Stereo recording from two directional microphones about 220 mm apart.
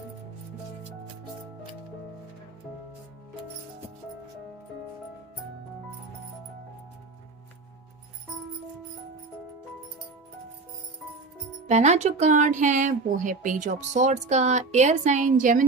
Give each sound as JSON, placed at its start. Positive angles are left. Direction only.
{"t": 11.7, "sound": "speech", "side_deg": -30}